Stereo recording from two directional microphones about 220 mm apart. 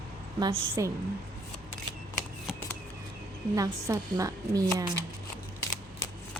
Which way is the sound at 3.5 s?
15° right (ahead or behind).